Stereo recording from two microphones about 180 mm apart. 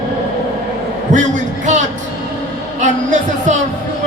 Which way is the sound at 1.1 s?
45° right (ahead or behind).